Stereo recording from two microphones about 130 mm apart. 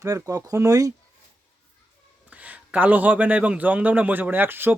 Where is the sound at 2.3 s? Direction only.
10° right (ahead or behind).